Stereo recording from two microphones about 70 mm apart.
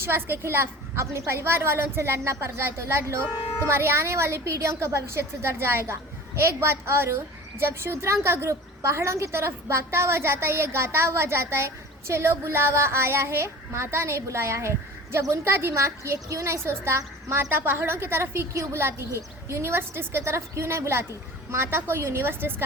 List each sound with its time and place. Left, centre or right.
0.0 s a woman's voice: right